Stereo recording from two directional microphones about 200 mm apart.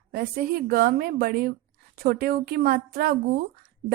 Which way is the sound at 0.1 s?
50° right (ahead or behind).